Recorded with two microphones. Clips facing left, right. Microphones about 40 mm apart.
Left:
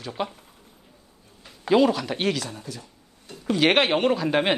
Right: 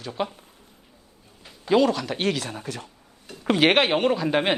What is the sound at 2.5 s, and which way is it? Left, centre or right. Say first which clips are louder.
Speech: right 4 dB; right.